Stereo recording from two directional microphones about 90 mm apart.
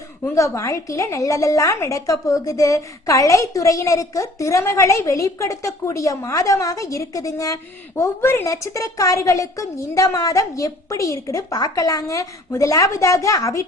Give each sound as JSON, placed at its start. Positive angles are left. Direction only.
{"t": 0.3, "sound": "a woman's voice", "side_deg": 35}
{"t": 8.2, "sound": "a woman's voice", "side_deg": 30}